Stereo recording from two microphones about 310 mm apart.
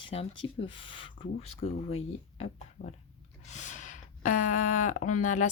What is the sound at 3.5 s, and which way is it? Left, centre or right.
Speech, left.